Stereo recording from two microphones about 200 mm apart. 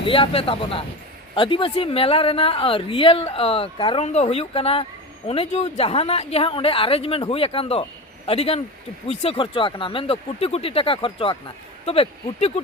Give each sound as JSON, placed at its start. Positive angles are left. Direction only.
{"t": 0.0, "sound": "speech", "side_deg": 25}